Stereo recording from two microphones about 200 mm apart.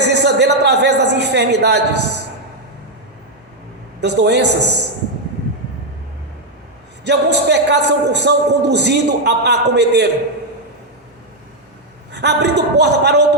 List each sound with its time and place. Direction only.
0.0 s a sound: 55° right (ahead or behind)
4.0 s a man's voice: 60° right (ahead or behind)
7.0 s a man's voice: 55° right (ahead or behind)
12.1 s a man's voice: 55° right (ahead or behind)